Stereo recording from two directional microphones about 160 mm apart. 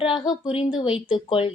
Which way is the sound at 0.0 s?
30° left (ahead or behind).